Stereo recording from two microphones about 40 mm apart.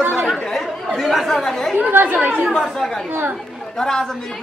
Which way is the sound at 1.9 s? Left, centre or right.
Right.